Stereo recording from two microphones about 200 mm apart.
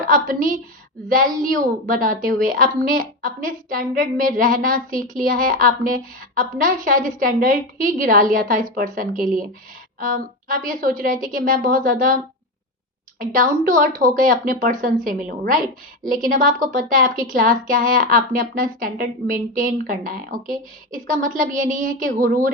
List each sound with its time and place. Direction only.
0.1 s a woman's voice: 40° right (ahead or behind)